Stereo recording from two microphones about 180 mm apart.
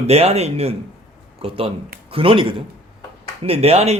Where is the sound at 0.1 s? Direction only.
35° right (ahead or behind).